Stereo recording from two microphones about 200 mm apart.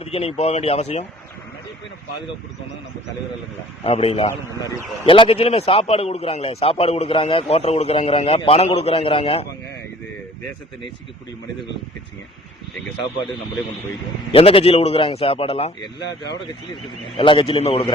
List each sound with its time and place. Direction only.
0.0 s speech: 30° left (ahead or behind)
3.8 s a man's voice: 30° left (ahead or behind)
14.3 s a man's voice: 30° left (ahead or behind)
16.0 s speech: 60° left (ahead or behind)
17.2 s a man's voice: 25° left (ahead or behind)